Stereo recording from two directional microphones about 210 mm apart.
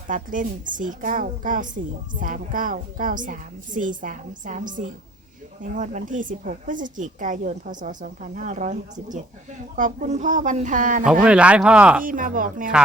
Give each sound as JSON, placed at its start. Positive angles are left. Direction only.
{"t": 0.1, "sound": "a woman's voice", "side_deg": -40}
{"t": 11.0, "sound": "speech", "side_deg": -5}
{"t": 12.0, "sound": "a woman's voice", "side_deg": -40}